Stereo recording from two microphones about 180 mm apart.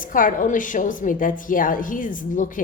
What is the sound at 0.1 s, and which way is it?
A woman's voice, 50° left (ahead or behind).